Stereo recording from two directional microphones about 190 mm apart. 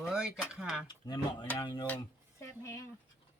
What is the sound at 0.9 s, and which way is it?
Speech, 25° left (ahead or behind).